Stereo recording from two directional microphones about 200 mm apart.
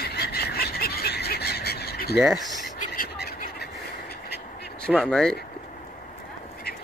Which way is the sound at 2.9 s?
45° left (ahead or behind).